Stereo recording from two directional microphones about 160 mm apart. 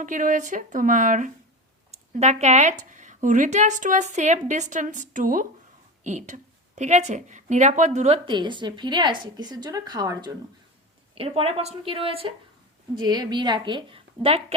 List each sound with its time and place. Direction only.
0.0 s a woman's voice: 55° right (ahead or behind); by 10.3 s 25° right (ahead or behind)
11.1 s a woman's voice: 35° right (ahead or behind)